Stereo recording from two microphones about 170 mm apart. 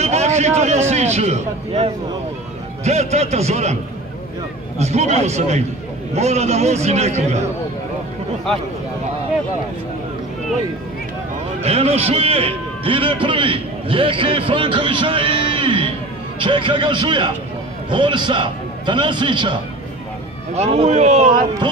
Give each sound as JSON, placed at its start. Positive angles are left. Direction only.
{"t": 0.0, "sound": "a sound", "side_deg": -40}
{"t": 0.6, "sound": "a man's voice", "side_deg": -40}
{"t": 4.7, "sound": "a man's voice", "side_deg": -40}
{"t": 11.6, "sound": "a man's voice", "side_deg": -40}
{"t": 20.5, "sound": "a man's voice", "side_deg": -40}